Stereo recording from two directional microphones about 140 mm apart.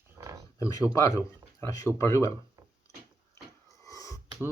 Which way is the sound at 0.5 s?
25° left (ahead or behind).